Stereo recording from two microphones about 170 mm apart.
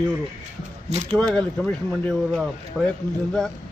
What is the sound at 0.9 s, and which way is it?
Speech, 40° right (ahead or behind).